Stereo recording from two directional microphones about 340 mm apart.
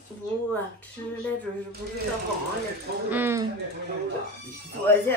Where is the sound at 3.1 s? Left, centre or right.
Centre.